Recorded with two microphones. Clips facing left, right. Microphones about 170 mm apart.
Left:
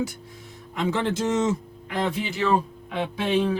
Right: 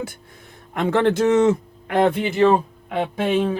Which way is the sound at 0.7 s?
60° right (ahead or behind).